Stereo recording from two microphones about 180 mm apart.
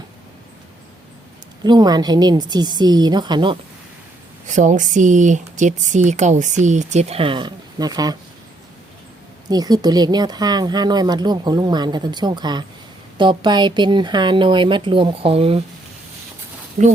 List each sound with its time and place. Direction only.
1.6 s speech: 25° right (ahead or behind)
4.4 s speech: 45° right (ahead or behind); by 8.1 s 20° right (ahead or behind)
9.5 s speech: 20° right (ahead or behind)
16.8 s speech: 45° right (ahead or behind)